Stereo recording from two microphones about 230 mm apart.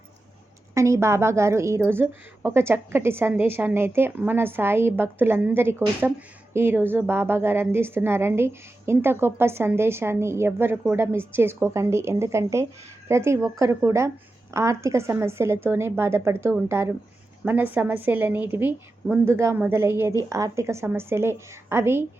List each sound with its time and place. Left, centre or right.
0.7 s a woman's voice: centre